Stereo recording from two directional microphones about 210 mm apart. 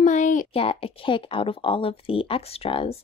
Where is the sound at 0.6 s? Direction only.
25° left (ahead or behind).